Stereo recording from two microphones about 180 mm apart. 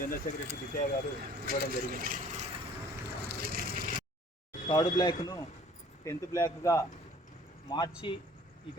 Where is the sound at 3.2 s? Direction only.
60° right (ahead or behind).